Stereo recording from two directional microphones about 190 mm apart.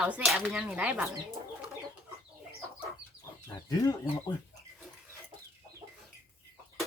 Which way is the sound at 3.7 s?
20° left (ahead or behind).